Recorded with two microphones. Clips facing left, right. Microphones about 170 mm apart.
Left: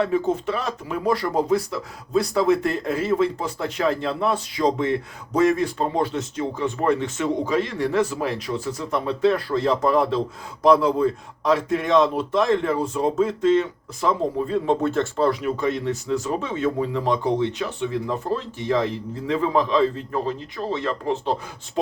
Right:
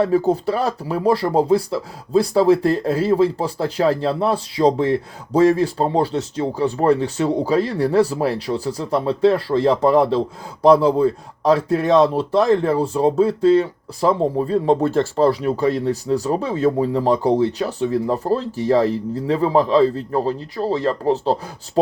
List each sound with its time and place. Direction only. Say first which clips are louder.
0.0 s speech: right 5 dB; 35° right (ahead or behind)